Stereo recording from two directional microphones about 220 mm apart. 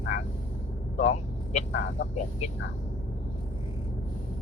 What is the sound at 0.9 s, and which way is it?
Vehicle, 35° left (ahead or behind).